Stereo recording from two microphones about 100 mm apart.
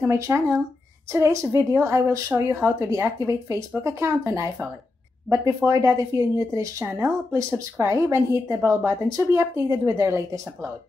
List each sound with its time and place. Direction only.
0.0 s a woman's voice: 25° right (ahead or behind)
5.7 s a woman's voice: 35° right (ahead or behind)